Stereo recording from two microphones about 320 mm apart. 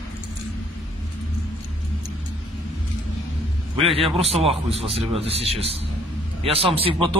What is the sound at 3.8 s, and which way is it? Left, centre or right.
Speech, centre.